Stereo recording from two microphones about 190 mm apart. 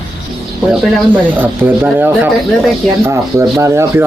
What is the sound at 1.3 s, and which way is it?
Speech, 10° right (ahead or behind).